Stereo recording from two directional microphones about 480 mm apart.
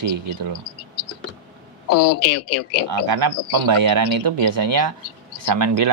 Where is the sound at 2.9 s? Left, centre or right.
Right.